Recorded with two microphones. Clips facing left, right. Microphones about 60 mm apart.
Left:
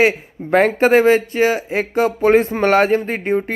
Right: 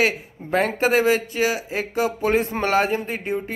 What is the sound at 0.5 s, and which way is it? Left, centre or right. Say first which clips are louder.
Speech: left 7 dB; left.